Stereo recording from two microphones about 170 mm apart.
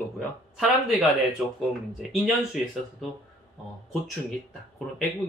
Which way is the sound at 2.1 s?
Centre (ahead or behind).